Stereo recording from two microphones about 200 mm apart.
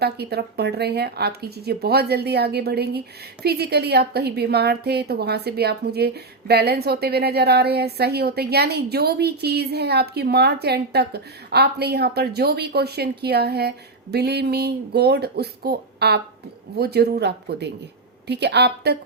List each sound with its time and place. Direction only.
0.0 s a woman's voice: 55° right (ahead or behind)